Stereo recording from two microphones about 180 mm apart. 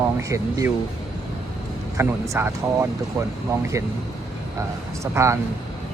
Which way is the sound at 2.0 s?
15° right (ahead or behind).